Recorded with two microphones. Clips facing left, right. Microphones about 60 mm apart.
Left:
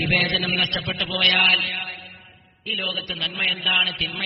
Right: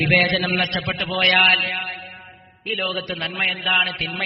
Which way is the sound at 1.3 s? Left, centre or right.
Right.